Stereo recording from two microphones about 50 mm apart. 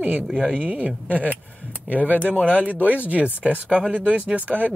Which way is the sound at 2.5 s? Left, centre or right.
Right.